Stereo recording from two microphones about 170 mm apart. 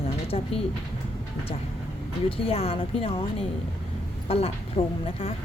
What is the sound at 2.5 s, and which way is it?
Speech, 35° left (ahead or behind).